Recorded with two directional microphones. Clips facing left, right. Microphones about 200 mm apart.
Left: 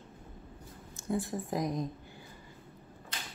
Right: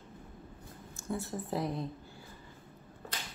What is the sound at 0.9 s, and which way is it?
Speech, 15° left (ahead or behind).